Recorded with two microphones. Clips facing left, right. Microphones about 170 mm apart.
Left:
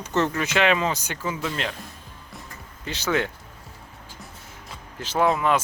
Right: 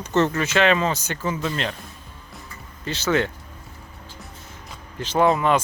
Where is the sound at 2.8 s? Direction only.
15° left (ahead or behind).